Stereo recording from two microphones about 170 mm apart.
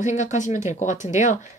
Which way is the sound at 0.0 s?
45° left (ahead or behind).